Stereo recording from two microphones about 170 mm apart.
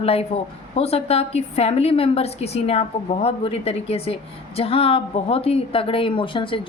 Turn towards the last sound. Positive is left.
turn(degrees=30)  # may be behind; listen again after turning